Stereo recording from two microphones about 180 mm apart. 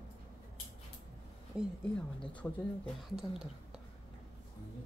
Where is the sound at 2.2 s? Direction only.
5° left (ahead or behind).